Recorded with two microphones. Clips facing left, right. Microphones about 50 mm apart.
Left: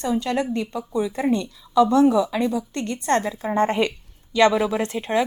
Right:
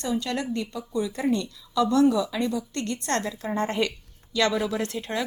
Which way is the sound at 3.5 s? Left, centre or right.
Left.